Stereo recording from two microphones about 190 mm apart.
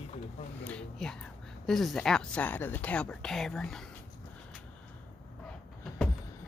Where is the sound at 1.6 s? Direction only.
Centre (ahead or behind).